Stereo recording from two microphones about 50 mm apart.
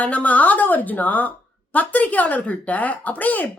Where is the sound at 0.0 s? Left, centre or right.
Left.